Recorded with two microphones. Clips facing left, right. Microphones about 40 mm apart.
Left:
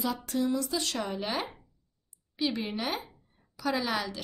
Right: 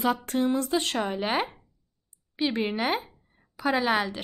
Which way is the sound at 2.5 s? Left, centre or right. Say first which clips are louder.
Right 6 dB; right.